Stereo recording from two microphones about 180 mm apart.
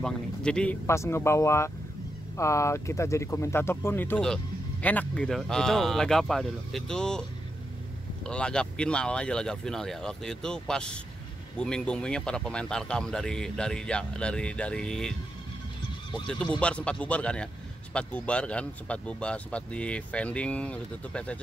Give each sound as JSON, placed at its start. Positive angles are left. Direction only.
{"t": 0.0, "sound": "speech", "side_deg": 5}
{"t": 16.5, "sound": "speech", "side_deg": 5}